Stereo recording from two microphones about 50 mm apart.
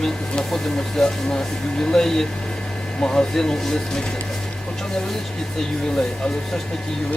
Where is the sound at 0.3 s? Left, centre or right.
Centre.